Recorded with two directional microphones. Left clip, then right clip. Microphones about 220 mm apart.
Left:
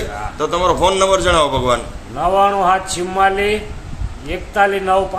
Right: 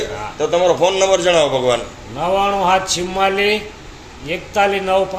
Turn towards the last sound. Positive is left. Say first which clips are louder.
# left 1 dB
turn(degrees=5)  # may be behind; listen again after turning